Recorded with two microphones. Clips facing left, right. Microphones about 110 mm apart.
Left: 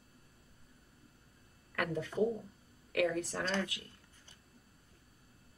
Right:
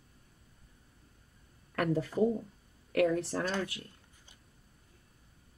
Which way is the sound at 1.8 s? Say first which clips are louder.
Right 4 dB; 35° right (ahead or behind).